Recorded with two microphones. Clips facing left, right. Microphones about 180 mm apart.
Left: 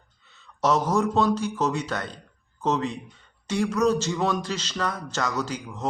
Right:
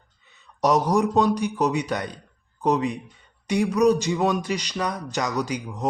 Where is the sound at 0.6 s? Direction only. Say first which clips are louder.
Right 2 dB; 15° right (ahead or behind).